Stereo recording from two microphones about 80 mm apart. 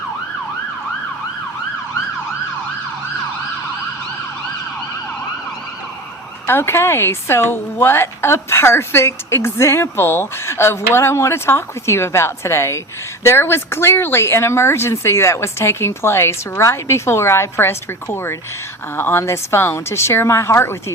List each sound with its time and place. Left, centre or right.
6.5 s a woman's voice: left